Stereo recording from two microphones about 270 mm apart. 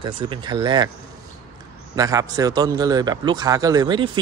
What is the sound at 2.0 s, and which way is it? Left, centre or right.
Speech, centre.